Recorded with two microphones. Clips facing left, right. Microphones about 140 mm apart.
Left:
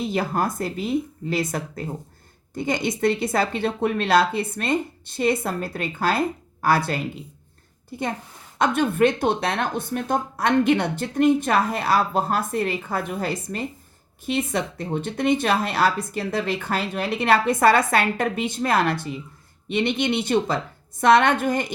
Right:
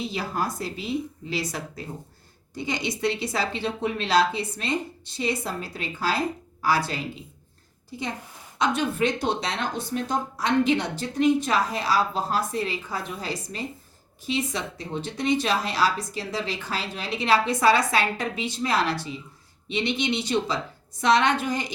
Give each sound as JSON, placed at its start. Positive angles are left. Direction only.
{"t": 0.0, "sound": "speech", "side_deg": 50}